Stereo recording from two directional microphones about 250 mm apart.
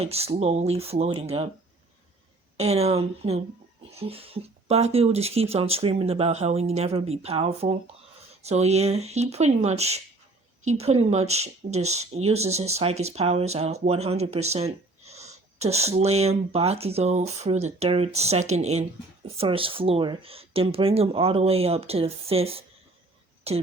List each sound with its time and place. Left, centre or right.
0.0 s speech: right
2.6 s speech: right